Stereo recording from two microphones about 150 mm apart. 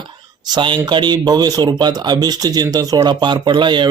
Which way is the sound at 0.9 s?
30° right (ahead or behind).